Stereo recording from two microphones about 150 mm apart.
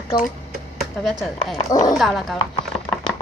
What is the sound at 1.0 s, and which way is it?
Speech, centre (ahead or behind).